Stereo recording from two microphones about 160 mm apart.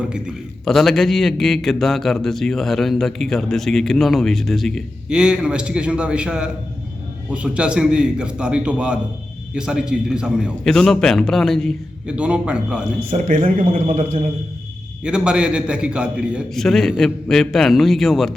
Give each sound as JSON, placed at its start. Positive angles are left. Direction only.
{"t": 0.1, "sound": "a man's voice", "side_deg": 0}
{"t": 13.4, "sound": "a man's voice", "side_deg": -40}
{"t": 13.9, "sound": "a man's voice", "side_deg": -50}
{"t": 15.0, "sound": "a man's voice", "side_deg": -5}